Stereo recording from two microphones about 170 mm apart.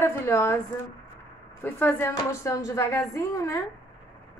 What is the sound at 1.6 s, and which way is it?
A woman's voice, 10° left (ahead or behind).